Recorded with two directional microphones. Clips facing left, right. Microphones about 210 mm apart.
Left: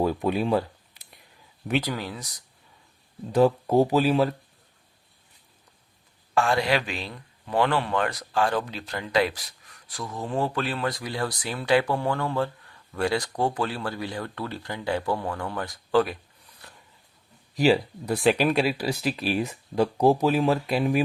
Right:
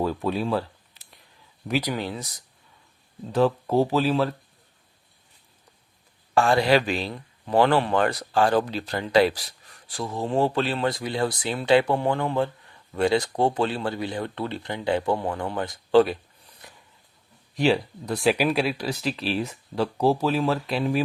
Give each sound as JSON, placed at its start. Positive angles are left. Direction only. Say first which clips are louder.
{"t": 0.0, "sound": "speech", "louder": "left 1 dB", "side_deg": 15}
{"t": 1.8, "sound": "speech", "louder": "right 3 dB", "side_deg": -20}
{"t": 3.3, "sound": "speech", "louder": "left 1 dB", "side_deg": 10}
{"t": 6.3, "sound": "speech", "louder": "right 4 dB", "side_deg": -30}
{"t": 17.6, "sound": "speech", "louder": "left 1 dB", "side_deg": 5}